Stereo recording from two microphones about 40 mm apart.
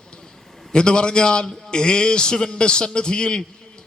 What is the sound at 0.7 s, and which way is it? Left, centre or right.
A man's voice, left.